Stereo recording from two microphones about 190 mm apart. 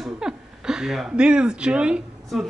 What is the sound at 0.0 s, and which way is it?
Speech, 5° right (ahead or behind).